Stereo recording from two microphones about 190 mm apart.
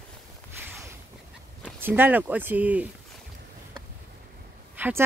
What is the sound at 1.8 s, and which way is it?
Speech, 10° right (ahead or behind).